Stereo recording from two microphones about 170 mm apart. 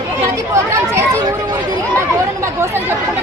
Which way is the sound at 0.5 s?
15° right (ahead or behind).